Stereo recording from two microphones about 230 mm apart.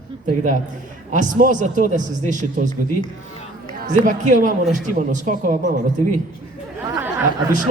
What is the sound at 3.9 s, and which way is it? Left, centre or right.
A man's voice, right.